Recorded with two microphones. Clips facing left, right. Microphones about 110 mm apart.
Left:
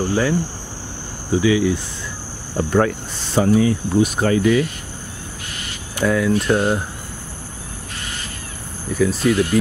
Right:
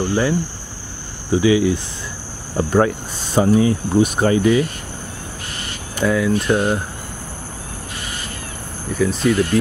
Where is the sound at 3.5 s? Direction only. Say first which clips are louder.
Even; 30° right (ahead or behind).